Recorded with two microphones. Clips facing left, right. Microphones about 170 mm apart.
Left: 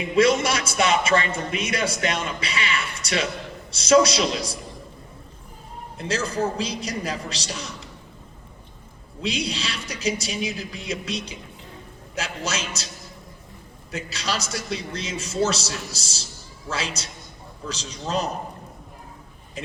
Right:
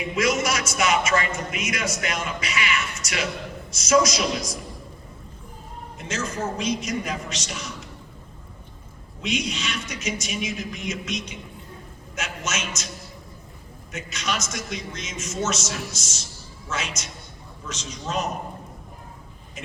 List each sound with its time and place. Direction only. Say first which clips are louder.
0.2 s a man's voice: left 5 dB; 30° left (ahead or behind)
6.0 s a man's voice: left 4 dB; 35° left (ahead or behind)
9.2 s a man's voice: even; 35° left (ahead or behind)
13.9 s a man's voice: left 1 dB; 35° left (ahead or behind)
19.6 s a man's voice: left 5 dB; 35° left (ahead or behind)